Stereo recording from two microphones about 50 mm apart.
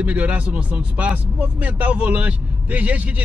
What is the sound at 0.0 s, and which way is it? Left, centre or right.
Speech, right.